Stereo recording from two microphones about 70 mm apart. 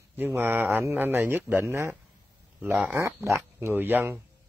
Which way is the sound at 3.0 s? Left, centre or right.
Right.